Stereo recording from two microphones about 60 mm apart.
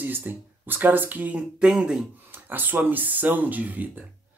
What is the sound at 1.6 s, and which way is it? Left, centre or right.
Speech, centre.